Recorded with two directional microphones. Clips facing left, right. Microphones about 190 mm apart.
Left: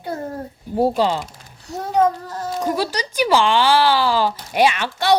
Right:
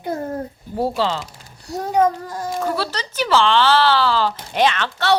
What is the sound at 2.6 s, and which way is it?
Speech, 15° left (ahead or behind).